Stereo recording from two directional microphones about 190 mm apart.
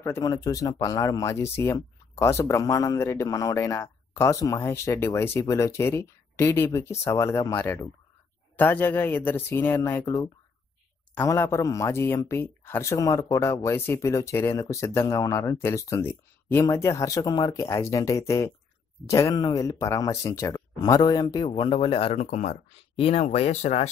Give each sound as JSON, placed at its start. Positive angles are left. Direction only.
{"t": 0.0, "sound": "speech", "side_deg": 15}